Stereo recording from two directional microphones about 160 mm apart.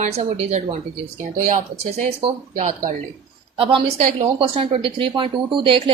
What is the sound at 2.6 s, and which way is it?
Speech, 55° right (ahead or behind).